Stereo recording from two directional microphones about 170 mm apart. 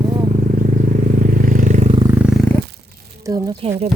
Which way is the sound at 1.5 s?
50° right (ahead or behind).